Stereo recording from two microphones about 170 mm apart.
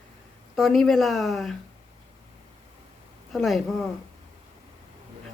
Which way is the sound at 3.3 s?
Centre (ahead or behind).